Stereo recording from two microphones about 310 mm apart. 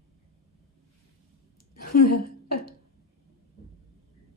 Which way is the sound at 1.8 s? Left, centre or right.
Left.